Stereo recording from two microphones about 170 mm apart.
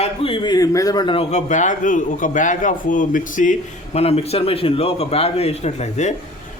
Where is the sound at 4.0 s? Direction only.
35° left (ahead or behind).